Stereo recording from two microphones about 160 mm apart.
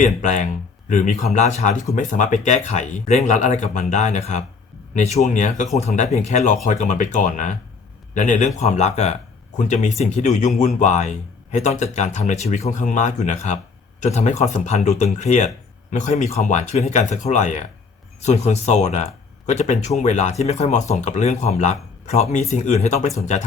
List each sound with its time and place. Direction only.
0.0 s speech: 50° left (ahead or behind)